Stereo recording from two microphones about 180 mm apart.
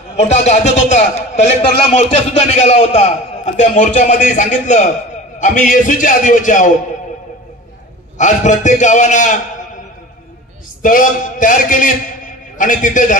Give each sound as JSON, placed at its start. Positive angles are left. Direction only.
{"t": 0.1, "sound": "a man's voice", "side_deg": 40}
{"t": 8.2, "sound": "a man's voice", "side_deg": 45}
{"t": 10.8, "sound": "a man's voice", "side_deg": 50}